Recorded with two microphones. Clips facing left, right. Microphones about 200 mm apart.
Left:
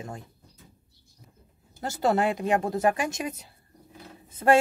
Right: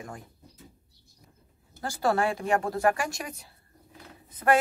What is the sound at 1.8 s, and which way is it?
A woman's voice, 20° left (ahead or behind).